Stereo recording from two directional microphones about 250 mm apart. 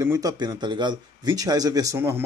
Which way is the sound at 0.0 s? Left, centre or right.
Centre.